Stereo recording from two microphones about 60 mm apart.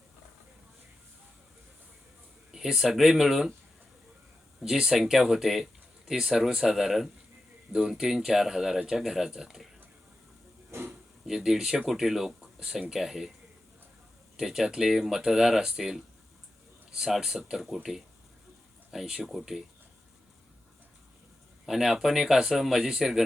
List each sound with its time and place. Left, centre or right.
2.5 s speech: centre
4.6 s speech: centre
10.7 s a sound: right
11.3 s speech: centre
14.3 s speech: centre
18.9 s speech: centre
21.7 s speech: centre